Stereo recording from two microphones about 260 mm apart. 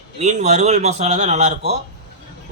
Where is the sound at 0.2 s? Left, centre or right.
Right.